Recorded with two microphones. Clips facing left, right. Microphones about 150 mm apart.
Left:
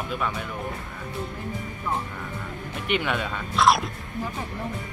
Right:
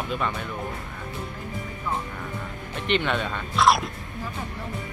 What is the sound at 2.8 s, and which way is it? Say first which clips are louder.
Speech: right 1 dB; 10° left (ahead or behind).